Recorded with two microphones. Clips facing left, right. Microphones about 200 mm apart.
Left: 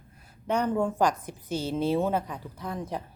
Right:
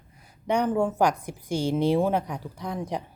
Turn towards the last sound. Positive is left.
turn(degrees=-15)  # may be behind; listen again after turning